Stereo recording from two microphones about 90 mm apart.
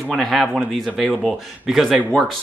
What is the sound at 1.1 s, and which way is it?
Speech, 10° left (ahead or behind).